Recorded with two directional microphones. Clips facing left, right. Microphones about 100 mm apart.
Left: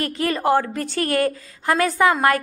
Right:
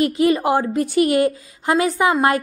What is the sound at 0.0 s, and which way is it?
A woman's voice, 15° right (ahead or behind).